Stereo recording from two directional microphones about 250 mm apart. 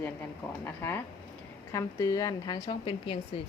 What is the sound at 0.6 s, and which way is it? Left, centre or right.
A woman's voice, centre.